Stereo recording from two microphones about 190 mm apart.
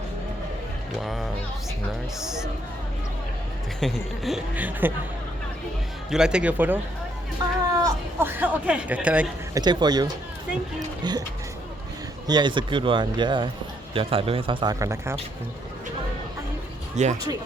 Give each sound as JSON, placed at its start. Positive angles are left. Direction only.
{"t": 2.2, "sound": "speech", "side_deg": -5}
{"t": 3.8, "sound": "speech", "side_deg": 0}
{"t": 6.1, "sound": "speech", "side_deg": -5}
{"t": 7.4, "sound": "a man's voice", "side_deg": -20}
{"t": 9.6, "sound": "a man's voice", "side_deg": -20}
{"t": 12.3, "sound": "a man's voice", "side_deg": -25}
{"t": 17.0, "sound": "speech", "side_deg": -35}